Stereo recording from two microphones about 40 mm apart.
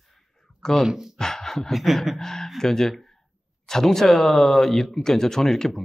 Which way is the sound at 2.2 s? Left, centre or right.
Centre.